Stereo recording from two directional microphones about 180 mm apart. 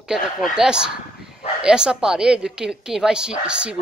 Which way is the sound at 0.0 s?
5° right (ahead or behind).